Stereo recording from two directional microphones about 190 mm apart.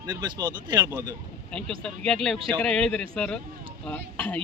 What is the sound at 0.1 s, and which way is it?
Speech, 20° right (ahead or behind).